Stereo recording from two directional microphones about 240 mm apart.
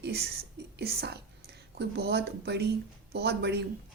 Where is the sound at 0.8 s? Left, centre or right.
Right.